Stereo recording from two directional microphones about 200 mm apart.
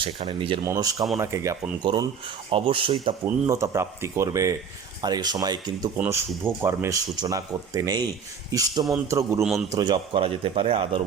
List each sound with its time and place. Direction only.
0.0 s speech: 25° right (ahead or behind)
3.4 s speech: 15° right (ahead or behind)
9.4 s a man's voice: centre (ahead or behind)
9.7 s speech: 20° right (ahead or behind)